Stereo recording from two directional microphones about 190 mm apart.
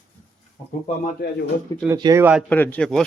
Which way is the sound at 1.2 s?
60° left (ahead or behind).